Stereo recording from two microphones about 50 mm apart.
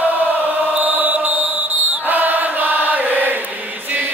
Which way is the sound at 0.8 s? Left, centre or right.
Right.